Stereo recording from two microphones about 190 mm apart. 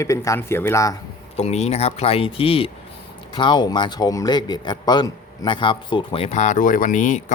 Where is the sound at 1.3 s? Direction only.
35° left (ahead or behind).